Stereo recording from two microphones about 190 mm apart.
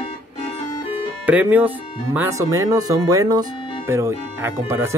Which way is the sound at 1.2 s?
10° right (ahead or behind).